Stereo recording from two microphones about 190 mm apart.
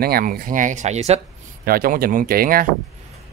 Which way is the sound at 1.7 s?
50° right (ahead or behind).